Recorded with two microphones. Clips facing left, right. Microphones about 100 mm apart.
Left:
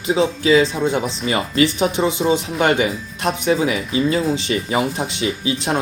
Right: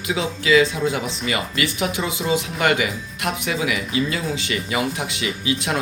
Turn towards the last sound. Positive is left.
turn(degrees=30)  # may be behind; listen again after turning